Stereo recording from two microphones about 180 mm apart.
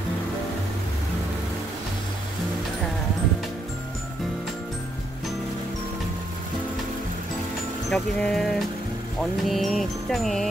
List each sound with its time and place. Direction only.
7.9 s music: centre (ahead or behind)